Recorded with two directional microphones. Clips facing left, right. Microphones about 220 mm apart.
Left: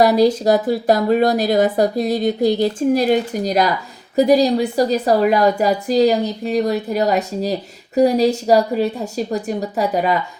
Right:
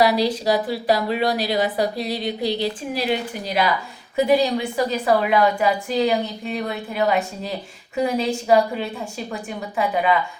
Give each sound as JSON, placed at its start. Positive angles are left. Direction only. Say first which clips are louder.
{"t": 0.0, "sound": "a woman's voice", "louder": "left 5 dB", "side_deg": 45}